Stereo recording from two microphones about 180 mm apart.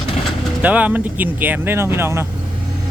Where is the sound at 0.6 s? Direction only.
10° right (ahead or behind).